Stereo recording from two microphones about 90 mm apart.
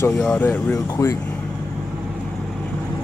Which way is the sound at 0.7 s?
40° left (ahead or behind).